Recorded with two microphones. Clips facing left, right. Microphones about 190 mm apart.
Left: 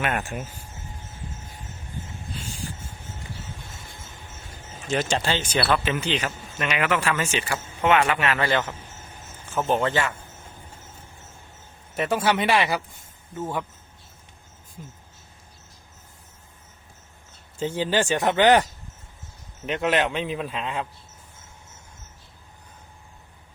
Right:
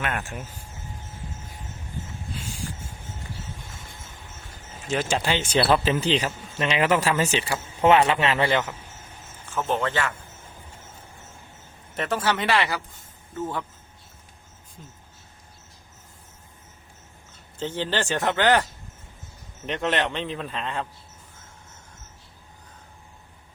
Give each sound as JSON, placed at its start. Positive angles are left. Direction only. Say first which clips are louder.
{"t": 0.1, "sound": "speech", "louder": "left 3 dB", "side_deg": 20}
{"t": 4.9, "sound": "speech", "louder": "even", "side_deg": -5}
{"t": 5.4, "sound": "speech", "louder": "right 3 dB", "side_deg": -30}
{"t": 9.6, "sound": "speech", "louder": "left 2 dB", "side_deg": 15}
{"t": 11.9, "sound": "speech", "louder": "left 3 dB", "side_deg": 10}
{"t": 17.6, "sound": "speech", "louder": "left 3 dB", "side_deg": 10}
{"t": 19.6, "sound": "speech", "louder": "left 2 dB", "side_deg": 5}